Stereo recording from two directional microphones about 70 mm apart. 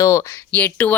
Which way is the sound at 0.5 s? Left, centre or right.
Left.